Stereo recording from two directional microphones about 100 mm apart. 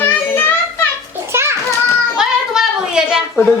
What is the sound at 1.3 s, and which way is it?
Children playing, 25° right (ahead or behind).